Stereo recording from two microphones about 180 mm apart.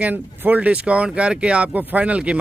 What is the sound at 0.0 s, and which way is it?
Speech, 10° right (ahead or behind).